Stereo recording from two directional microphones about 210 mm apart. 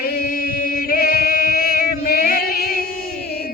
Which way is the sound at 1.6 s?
45° left (ahead or behind).